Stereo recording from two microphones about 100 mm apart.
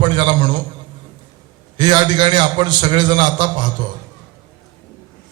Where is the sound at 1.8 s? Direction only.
50° right (ahead or behind).